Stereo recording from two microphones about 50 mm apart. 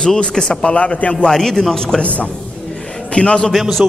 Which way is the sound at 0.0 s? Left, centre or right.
Centre.